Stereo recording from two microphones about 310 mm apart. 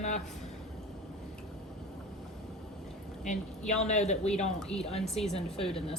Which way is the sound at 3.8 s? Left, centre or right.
Left.